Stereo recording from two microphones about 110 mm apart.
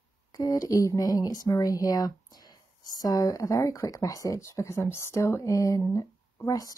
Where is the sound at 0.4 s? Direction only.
35° left (ahead or behind).